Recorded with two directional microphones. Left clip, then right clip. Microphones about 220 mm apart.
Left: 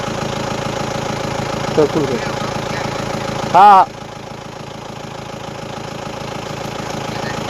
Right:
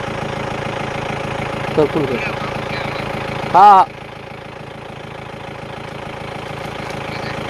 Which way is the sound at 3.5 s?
5° right (ahead or behind).